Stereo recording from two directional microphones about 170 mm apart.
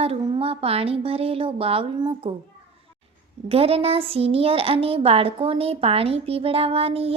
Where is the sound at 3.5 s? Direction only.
35° right (ahead or behind).